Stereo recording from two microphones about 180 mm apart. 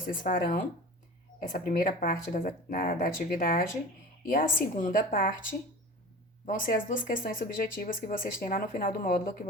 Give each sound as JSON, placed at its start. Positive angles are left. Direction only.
{"t": 0.0, "sound": "speech", "side_deg": 45}